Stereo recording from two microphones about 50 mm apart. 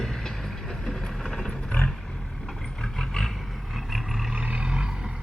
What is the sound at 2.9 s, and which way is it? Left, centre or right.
Vehicle, centre.